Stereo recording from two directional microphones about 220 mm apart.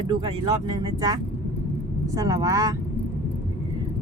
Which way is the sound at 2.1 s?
15° right (ahead or behind).